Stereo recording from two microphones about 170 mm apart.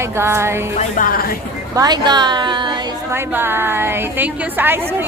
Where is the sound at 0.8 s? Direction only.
50° left (ahead or behind).